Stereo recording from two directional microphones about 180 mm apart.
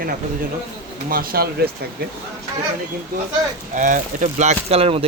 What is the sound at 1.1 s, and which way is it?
Speech, 55° right (ahead or behind).